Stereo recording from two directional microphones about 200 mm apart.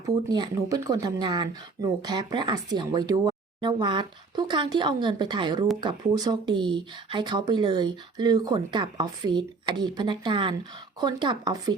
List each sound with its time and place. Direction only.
0.3 s speech: 20° right (ahead or behind)